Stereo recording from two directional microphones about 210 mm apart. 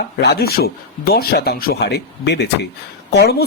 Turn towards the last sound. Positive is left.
turn(degrees=50)  # may be behind; listen again after turning